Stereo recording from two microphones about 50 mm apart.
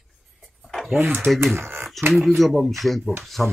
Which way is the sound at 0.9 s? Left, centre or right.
Right.